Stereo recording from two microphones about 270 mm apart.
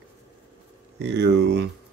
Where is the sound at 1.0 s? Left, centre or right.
Right.